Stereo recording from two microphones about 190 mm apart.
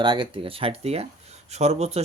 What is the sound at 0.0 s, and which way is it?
Speech, 25° right (ahead or behind).